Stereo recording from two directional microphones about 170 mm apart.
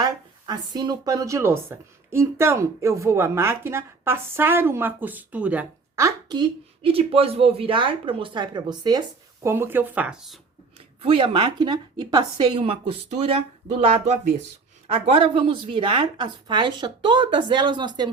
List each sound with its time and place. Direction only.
0.0 s speech: 25° right (ahead or behind); by 10.4 s centre (ahead or behind)
11.0 s a woman's voice: 30° right (ahead or behind)